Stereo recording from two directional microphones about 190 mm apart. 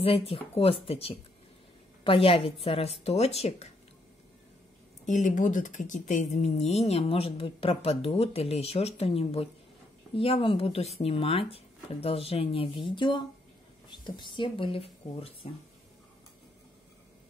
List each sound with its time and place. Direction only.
0.0 s speech: 30° left (ahead or behind)
5.0 s speech: 40° left (ahead or behind)